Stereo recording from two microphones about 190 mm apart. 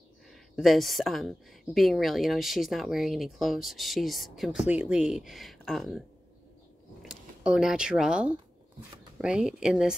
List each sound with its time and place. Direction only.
0.3 s a woman's voice: centre (ahead or behind)